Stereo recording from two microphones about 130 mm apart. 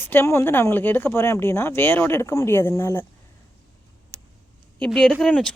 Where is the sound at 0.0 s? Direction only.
15° left (ahead or behind).